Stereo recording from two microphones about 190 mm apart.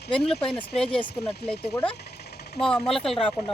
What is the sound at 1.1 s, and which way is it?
Speech, 60° left (ahead or behind).